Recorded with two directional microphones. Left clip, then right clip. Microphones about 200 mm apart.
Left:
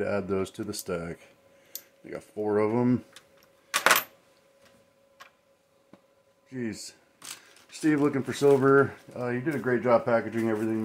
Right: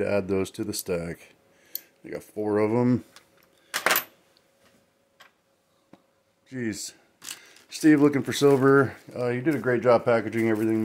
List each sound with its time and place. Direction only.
0.0 s speech: 35° right (ahead or behind)
6.5 s speech: 50° right (ahead or behind)
7.2 s speech: 35° right (ahead or behind)